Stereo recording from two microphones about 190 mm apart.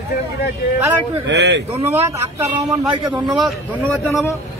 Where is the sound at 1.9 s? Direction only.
15° right (ahead or behind).